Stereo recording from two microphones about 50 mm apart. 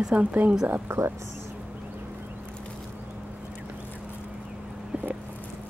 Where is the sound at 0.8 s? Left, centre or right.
Right.